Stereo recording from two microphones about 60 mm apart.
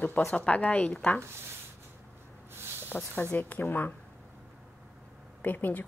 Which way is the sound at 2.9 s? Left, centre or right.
Left.